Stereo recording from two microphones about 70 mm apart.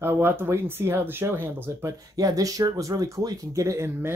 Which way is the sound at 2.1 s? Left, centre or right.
Right.